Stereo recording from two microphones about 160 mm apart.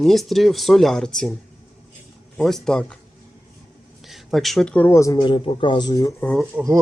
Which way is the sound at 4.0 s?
Centre (ahead or behind).